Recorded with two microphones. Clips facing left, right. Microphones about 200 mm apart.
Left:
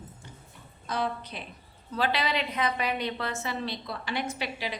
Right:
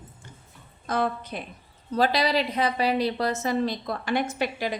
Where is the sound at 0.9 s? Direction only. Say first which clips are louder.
Right 5 dB; 50° right (ahead or behind).